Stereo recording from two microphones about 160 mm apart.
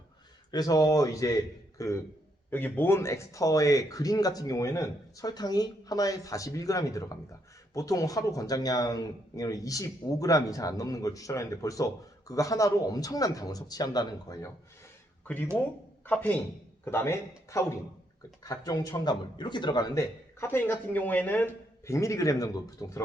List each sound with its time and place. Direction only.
0.5 s speech: 20° left (ahead or behind)
16.0 s speech: 10° left (ahead or behind)